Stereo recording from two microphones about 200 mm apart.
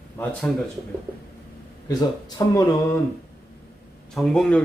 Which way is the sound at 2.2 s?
20° left (ahead or behind).